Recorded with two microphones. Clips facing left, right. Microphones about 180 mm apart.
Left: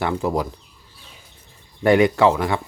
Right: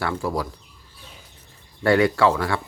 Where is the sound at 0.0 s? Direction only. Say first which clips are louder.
Left 4 dB; 20° left (ahead or behind).